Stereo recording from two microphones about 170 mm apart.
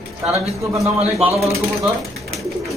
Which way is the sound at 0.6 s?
15° right (ahead or behind).